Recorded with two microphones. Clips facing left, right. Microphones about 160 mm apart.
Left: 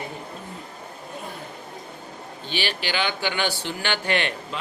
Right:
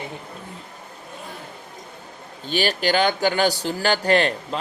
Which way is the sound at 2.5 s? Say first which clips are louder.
Right 7 dB; 45° right (ahead or behind).